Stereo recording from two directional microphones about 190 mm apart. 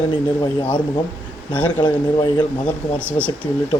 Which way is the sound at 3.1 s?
5° left (ahead or behind).